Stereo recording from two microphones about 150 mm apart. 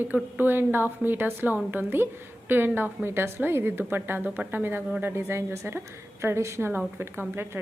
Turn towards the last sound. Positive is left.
turn(degrees=-15)  # may be behind; listen again after turning